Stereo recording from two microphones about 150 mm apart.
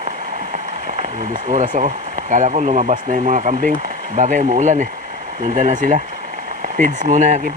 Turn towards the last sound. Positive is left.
turn(degrees=-55)  # may be behind; listen again after turning